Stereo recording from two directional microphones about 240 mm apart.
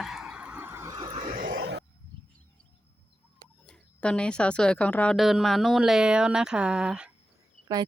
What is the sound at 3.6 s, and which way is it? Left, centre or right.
Speech, centre.